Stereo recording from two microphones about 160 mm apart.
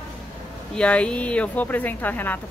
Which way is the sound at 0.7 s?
5° left (ahead or behind).